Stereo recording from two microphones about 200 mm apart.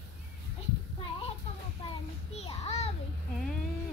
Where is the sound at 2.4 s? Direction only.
30° left (ahead or behind).